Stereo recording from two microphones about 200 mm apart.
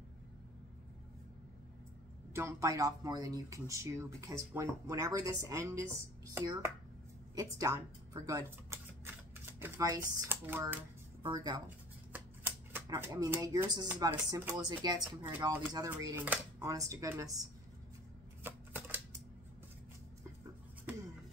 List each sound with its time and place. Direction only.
2.3 s speech: 15° right (ahead or behind)
11.2 s speech: 20° right (ahead or behind)
12.1 s typewriter: 10° right (ahead or behind)
13.9 s speech: 20° right (ahead or behind)
18.4 s typewriter: 10° right (ahead or behind)